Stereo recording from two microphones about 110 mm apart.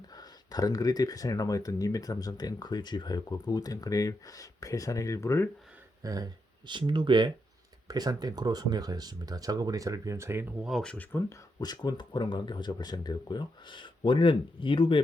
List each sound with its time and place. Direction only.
0.1 s speech: 35° left (ahead or behind)
6.0 s speech: 35° right (ahead or behind)
6.7 s speech: 45° right (ahead or behind); by 10.4 s 25° right (ahead or behind)
10.6 s speech: centre (ahead or behind)
10.9 s speech: 15° left (ahead or behind)
11.3 s speech: 40° left (ahead or behind)